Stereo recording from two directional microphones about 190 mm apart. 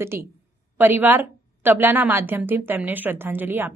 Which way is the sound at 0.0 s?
15° right (ahead or behind).